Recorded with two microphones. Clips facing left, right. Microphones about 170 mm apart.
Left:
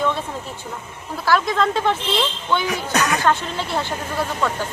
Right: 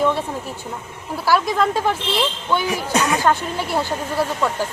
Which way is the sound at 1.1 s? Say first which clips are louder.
Right 1 dB; 10° right (ahead or behind).